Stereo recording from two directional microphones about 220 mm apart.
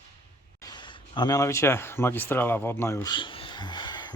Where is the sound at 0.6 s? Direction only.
20° left (ahead or behind).